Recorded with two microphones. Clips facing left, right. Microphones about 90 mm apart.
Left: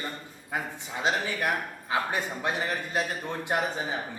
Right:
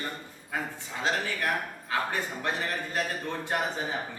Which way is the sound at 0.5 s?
20° left (ahead or behind).